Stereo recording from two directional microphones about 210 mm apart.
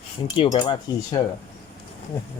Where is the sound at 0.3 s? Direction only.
20° left (ahead or behind).